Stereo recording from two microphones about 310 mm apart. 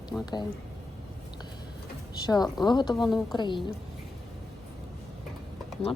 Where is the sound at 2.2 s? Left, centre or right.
Centre.